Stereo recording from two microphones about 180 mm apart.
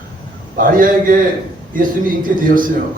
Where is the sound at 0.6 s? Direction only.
50° right (ahead or behind).